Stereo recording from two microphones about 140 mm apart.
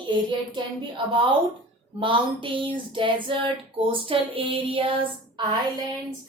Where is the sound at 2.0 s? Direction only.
35° right (ahead or behind).